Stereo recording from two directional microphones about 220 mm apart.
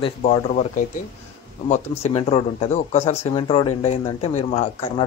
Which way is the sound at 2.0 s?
30° left (ahead or behind).